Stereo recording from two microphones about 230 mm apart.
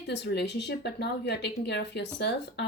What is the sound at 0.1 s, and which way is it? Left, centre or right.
Speech, left.